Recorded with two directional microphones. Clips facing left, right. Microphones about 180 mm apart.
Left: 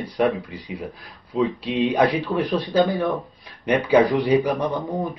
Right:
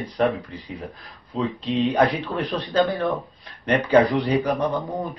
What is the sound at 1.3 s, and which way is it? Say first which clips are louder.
Speech: left 2 dB; 15° left (ahead or behind).